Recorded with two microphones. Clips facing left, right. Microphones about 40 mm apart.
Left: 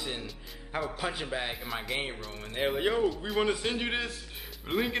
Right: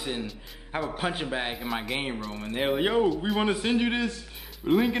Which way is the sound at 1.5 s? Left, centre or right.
Centre.